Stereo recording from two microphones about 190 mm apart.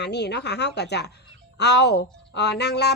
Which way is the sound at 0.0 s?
65° left (ahead or behind).